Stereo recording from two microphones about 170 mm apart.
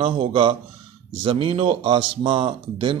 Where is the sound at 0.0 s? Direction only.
30° right (ahead or behind).